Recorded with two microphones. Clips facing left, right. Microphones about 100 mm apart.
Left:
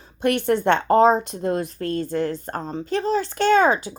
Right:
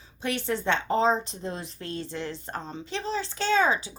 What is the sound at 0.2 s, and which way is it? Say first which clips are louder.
Speech: left 9 dB; 55° left (ahead or behind).